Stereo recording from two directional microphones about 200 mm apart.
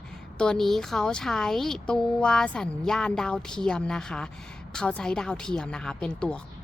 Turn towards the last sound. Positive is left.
turn(degrees=5)  # may be behind; listen again after turning